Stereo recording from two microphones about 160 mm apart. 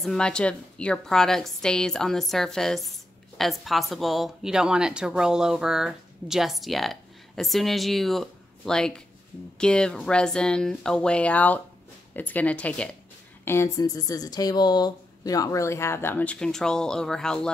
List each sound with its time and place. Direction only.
0.0 s a woman's voice: 5° left (ahead or behind)
13.5 s speech: 20° left (ahead or behind)